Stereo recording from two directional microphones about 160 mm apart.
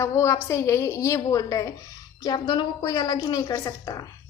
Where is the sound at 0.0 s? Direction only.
15° left (ahead or behind).